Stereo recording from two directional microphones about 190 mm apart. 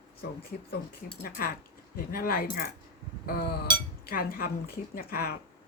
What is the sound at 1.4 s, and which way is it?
Speech, 50° left (ahead or behind).